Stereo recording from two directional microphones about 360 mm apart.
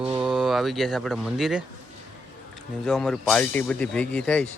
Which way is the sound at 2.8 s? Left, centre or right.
Centre.